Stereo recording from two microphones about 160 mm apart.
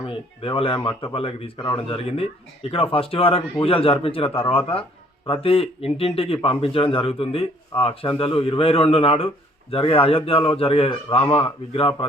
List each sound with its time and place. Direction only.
0.4 s a man's voice: 35° left (ahead or behind)